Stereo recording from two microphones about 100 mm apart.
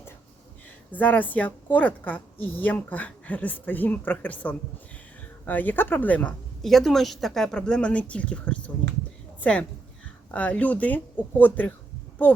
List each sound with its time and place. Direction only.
0.9 s a woman's voice: 15° left (ahead or behind)
6.6 s a woman's voice: 5° left (ahead or behind)